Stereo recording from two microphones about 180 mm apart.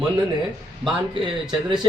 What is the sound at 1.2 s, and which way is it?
Speech, 25° right (ahead or behind).